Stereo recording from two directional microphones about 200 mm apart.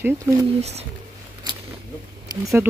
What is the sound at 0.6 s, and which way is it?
Speech, 30° right (ahead or behind).